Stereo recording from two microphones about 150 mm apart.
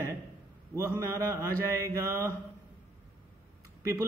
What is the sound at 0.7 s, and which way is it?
A man's voice, 20° right (ahead or behind).